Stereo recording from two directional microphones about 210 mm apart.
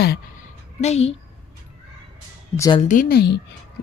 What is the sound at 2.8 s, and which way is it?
Speech, 40° left (ahead or behind).